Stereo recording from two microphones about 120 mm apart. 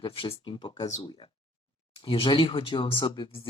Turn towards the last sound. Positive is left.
turn(degrees=45)  # may be behind; listen again after turning